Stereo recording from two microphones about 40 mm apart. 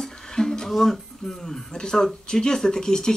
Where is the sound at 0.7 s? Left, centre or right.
Centre.